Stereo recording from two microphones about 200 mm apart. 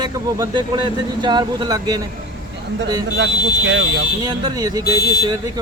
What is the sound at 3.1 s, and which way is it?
Speech, 65° right (ahead or behind).